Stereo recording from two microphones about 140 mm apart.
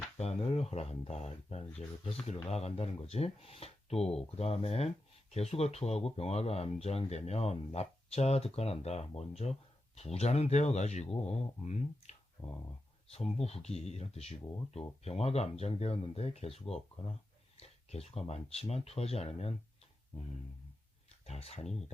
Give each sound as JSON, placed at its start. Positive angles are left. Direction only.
{"t": 0.2, "sound": "speech", "side_deg": 50}
{"t": 12.4, "sound": "speech", "side_deg": 30}
{"t": 13.1, "sound": "speech", "side_deg": 45}
{"t": 21.2, "sound": "speech", "side_deg": 50}